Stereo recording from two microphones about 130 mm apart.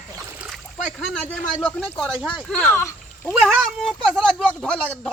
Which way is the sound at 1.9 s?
Centre (ahead or behind).